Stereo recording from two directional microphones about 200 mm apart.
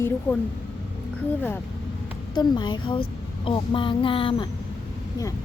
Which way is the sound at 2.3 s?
20° left (ahead or behind).